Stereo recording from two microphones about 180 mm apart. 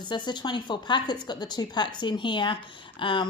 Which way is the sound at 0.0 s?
25° left (ahead or behind).